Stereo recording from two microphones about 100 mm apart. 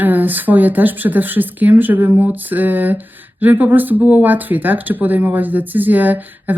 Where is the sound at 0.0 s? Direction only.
15° right (ahead or behind).